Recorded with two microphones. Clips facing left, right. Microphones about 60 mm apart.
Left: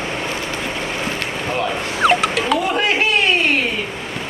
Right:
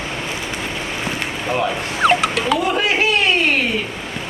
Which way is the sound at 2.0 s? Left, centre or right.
Centre.